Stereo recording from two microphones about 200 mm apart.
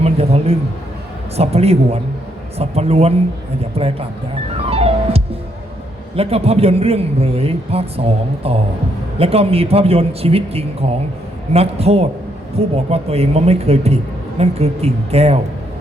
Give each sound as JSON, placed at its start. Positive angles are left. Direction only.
{"t": 0.0, "sound": "a sound", "side_deg": -30}
{"t": 1.4, "sound": "a man's voice", "side_deg": -30}
{"t": 4.5, "sound": "music", "side_deg": -30}
{"t": 6.1, "sound": "a man's voice", "side_deg": -30}